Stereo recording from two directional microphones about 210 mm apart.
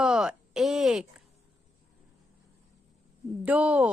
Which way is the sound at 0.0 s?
5° right (ahead or behind).